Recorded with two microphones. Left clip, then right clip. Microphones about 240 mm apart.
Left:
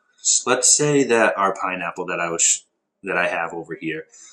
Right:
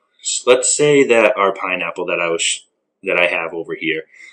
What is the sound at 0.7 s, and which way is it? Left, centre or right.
Speech, centre.